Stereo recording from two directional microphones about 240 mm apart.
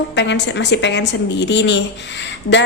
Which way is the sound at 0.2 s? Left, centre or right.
Left.